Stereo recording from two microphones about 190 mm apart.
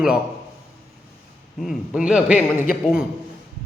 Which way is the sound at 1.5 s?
5° right (ahead or behind).